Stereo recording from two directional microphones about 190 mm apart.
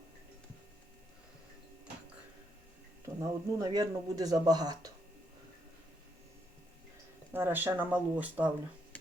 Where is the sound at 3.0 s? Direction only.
15° right (ahead or behind).